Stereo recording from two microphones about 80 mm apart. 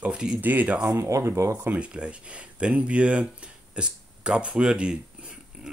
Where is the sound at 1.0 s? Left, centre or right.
Right.